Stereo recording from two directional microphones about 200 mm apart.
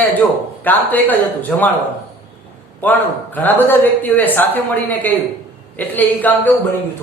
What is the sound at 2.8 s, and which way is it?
A man's voice, 10° left (ahead or behind).